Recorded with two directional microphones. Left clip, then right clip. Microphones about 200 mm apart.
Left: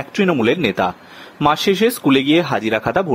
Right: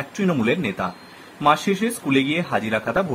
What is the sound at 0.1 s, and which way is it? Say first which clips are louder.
Speech: left 6 dB; 35° left (ahead or behind).